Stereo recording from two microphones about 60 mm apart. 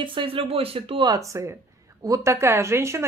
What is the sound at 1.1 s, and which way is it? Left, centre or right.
A woman's voice, right.